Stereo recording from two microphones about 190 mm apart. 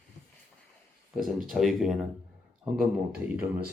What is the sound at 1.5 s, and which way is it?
A man's voice, centre (ahead or behind).